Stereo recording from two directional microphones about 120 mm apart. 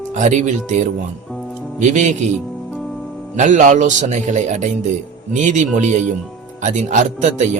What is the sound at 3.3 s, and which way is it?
Speech, 90° right.